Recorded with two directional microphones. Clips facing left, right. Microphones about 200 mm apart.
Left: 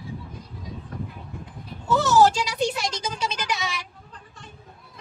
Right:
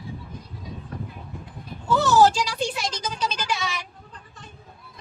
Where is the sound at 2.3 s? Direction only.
20° left (ahead or behind).